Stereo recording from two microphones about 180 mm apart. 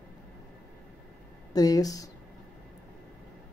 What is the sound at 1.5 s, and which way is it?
Speech, 20° left (ahead or behind).